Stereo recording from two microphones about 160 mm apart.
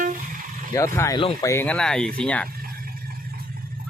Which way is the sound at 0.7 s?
15° left (ahead or behind).